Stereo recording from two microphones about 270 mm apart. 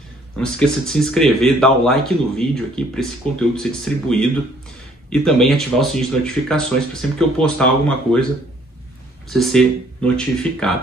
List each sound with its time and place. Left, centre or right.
0.4 s speech: centre
9.3 s speech: centre